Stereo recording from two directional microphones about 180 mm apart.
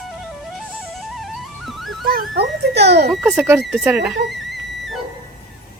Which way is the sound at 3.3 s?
15° right (ahead or behind).